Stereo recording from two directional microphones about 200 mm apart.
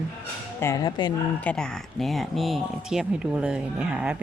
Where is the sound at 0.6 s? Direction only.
20° left (ahead or behind).